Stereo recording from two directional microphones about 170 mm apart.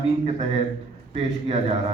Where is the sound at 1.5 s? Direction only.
40° right (ahead or behind).